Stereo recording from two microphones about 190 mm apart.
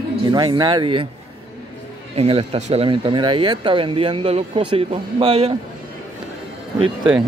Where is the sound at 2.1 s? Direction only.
30° right (ahead or behind).